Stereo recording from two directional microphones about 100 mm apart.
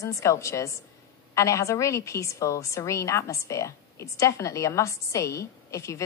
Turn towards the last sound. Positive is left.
turn(degrees=30)  # may be behind; listen again after turning